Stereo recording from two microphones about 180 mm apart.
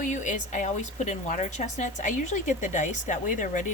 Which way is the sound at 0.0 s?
45° left (ahead or behind).